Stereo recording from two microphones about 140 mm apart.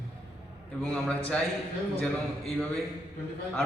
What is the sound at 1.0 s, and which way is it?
Speech, 10° left (ahead or behind).